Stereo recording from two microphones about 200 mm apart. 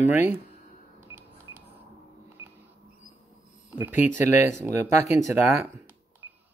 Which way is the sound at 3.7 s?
10° right (ahead or behind).